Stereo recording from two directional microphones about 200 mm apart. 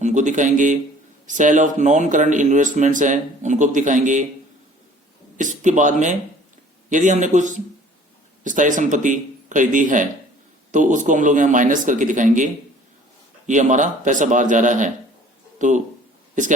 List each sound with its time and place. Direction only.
0.0 s speech: 35° right (ahead or behind)
5.4 s speech: 40° right (ahead or behind)
13.5 s speech: 40° right (ahead or behind)